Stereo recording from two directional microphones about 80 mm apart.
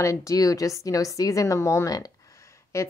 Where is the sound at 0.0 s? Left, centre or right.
Left.